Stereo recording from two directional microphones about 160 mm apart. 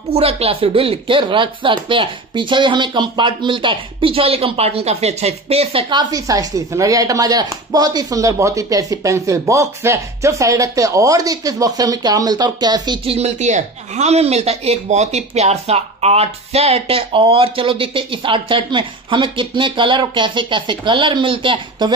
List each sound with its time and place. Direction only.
0.1 s speech: 40° right (ahead or behind)